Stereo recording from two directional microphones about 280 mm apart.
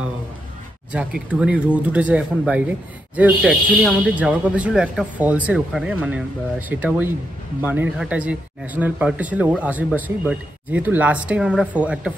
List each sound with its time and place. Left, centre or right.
0.9 s speech: centre